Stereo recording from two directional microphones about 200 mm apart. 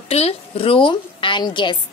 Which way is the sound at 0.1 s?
30° left (ahead or behind).